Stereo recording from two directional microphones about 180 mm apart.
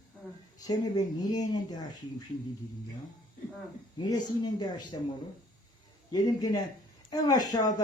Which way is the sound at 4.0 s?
20° left (ahead or behind).